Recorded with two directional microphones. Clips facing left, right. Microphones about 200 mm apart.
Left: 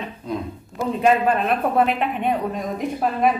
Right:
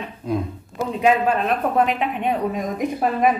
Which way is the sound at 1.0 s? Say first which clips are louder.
Even; 5° left (ahead or behind).